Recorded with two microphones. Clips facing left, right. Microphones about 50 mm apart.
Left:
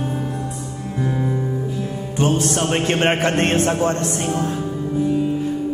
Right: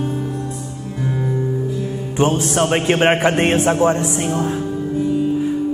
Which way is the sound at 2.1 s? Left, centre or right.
Right.